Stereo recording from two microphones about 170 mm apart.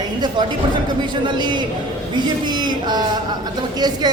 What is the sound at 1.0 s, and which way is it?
A woman's voice, 25° right (ahead or behind).